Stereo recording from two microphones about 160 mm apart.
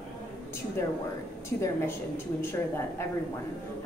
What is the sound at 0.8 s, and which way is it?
Speech, 15° left (ahead or behind).